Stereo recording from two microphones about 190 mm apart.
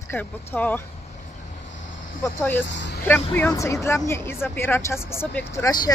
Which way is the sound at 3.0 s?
10° left (ahead or behind).